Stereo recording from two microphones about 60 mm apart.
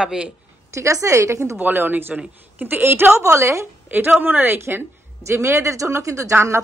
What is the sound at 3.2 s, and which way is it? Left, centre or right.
Speech, right.